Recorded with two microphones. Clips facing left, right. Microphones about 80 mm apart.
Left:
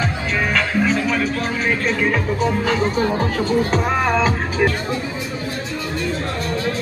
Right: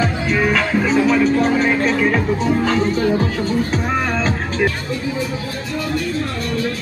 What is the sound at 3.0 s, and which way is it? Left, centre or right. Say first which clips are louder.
Speech: right 2 dB; left.